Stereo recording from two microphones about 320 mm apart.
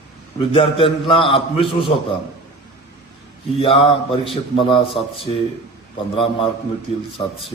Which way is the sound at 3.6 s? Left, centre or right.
Centre.